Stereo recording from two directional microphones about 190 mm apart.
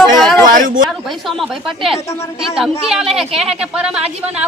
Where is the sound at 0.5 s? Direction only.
45° right (ahead or behind).